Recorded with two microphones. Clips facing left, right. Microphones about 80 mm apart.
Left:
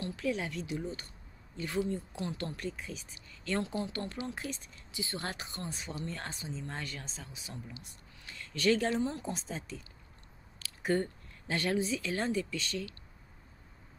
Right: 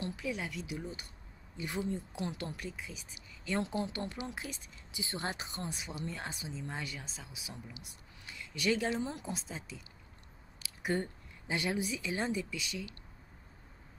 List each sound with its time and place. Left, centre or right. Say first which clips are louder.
0.0 s speech: left 3 dB; centre
3.6 s speech: even; right